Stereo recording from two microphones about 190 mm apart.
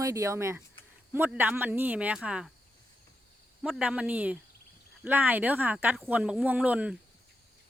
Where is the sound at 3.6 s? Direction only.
5° right (ahead or behind).